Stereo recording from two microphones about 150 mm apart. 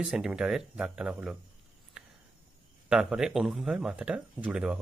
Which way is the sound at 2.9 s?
5° right (ahead or behind).